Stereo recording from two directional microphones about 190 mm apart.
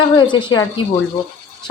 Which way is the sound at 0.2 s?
25° left (ahead or behind).